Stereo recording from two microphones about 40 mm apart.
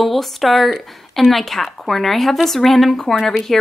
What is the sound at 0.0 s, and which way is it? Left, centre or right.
Speech, centre.